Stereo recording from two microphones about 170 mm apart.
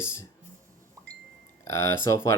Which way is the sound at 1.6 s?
15° left (ahead or behind).